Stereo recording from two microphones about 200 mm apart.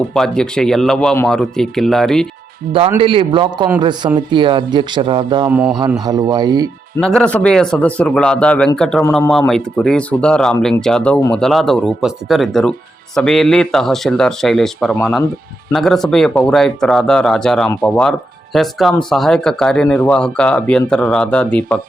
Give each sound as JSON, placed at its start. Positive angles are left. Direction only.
{"t": 0.1, "sound": "speech", "side_deg": 5}
{"t": 3.0, "sound": "speech", "side_deg": -25}
{"t": 5.5, "sound": "a man's voice", "side_deg": -5}
{"t": 6.1, "sound": "speech", "side_deg": -20}
{"t": 7.0, "sound": "speech", "side_deg": 5}